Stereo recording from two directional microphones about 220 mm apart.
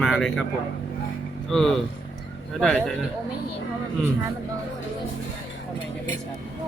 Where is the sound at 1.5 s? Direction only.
Centre (ahead or behind).